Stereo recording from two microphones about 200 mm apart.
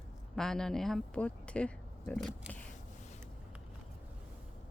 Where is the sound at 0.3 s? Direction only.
5° left (ahead or behind).